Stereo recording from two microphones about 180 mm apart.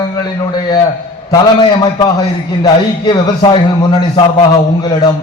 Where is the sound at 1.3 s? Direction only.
25° left (ahead or behind).